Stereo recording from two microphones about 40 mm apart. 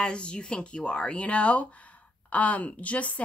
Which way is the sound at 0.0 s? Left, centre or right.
Left.